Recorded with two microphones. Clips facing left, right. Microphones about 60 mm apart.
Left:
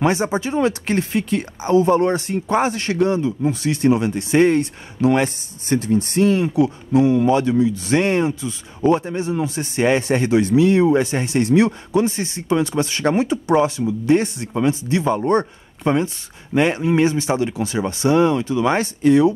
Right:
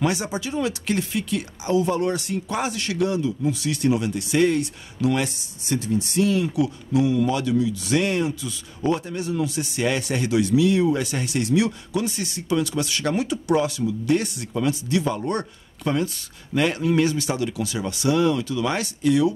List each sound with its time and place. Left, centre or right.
0.0 s speech: left